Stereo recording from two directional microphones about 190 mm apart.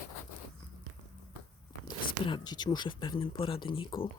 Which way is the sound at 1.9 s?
25° left (ahead or behind).